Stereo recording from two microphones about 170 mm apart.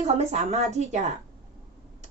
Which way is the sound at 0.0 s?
40° right (ahead or behind).